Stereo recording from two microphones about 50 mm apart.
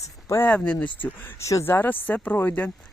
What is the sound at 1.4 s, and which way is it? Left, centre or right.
Speech, left.